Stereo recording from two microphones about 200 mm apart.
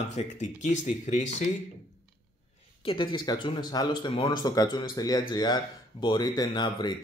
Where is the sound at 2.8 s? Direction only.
25° left (ahead or behind).